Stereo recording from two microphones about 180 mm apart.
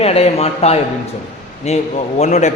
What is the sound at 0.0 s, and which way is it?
A man's voice, 35° left (ahead or behind).